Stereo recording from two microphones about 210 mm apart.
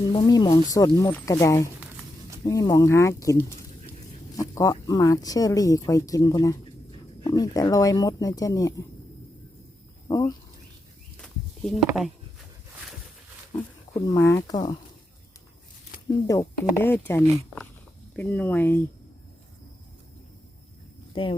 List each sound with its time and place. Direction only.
0.0 s speech: 20° left (ahead or behind)
1.8 s a sound: 5° right (ahead or behind)
2.5 s speech: 15° left (ahead or behind)
4.4 s speech: 15° left (ahead or behind)
10.1 s speech: 15° left (ahead or behind)
13.9 s speech: 15° left (ahead or behind)
16.0 s speech: 15° left (ahead or behind)
21.2 s speech: 25° left (ahead or behind)